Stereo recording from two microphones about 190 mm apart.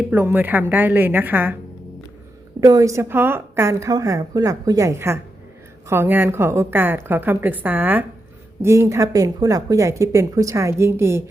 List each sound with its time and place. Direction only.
0.0 s a woman's voice: 10° right (ahead or behind)
2.6 s a woman's voice: 20° right (ahead or behind)